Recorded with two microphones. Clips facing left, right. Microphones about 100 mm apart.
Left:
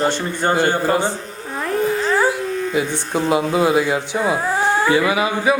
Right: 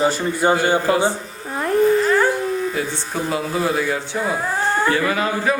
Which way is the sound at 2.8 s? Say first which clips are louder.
Left 4 dB; 20° left (ahead or behind).